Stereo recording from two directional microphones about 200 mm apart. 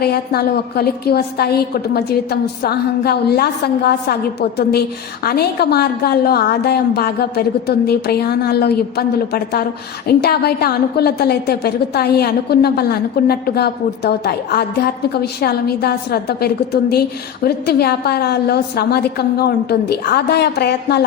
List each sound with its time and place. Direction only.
0.0 s a woman's voice: 50° left (ahead or behind)